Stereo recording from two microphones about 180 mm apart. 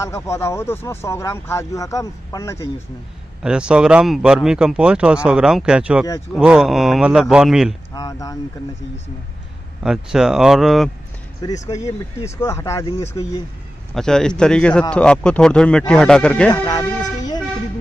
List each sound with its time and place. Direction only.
0.0 s speech: 15° left (ahead or behind)
3.4 s speech: 5° right (ahead or behind)
7.9 s speech: 20° left (ahead or behind)
9.8 s speech: centre (ahead or behind)
11.4 s speech: 20° left (ahead or behind)
13.9 s speech: 5° left (ahead or behind)
16.4 s music: 20° left (ahead or behind)